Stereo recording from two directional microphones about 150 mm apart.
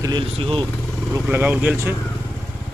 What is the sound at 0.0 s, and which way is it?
Speech, 30° right (ahead or behind).